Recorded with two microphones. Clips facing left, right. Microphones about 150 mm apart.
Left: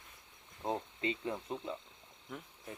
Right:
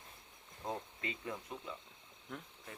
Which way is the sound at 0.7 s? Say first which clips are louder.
Left 6 dB; 25° left (ahead or behind).